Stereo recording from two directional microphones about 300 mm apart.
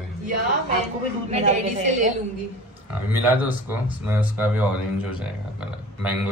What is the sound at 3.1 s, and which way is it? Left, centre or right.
A man's voice, centre.